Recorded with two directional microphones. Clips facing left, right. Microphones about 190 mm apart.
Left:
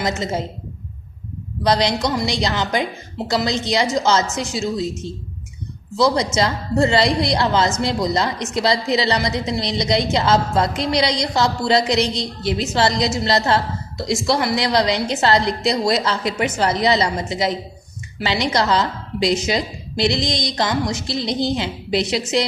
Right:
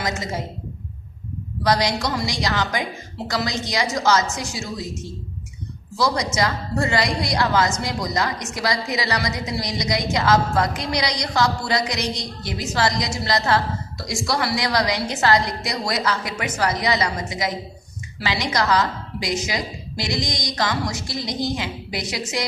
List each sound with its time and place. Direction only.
0.0 s a woman's voice: 25° left (ahead or behind)
1.6 s a woman's voice: 25° left (ahead or behind)